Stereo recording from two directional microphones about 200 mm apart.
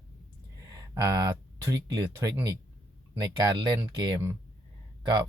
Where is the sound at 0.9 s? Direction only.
20° right (ahead or behind).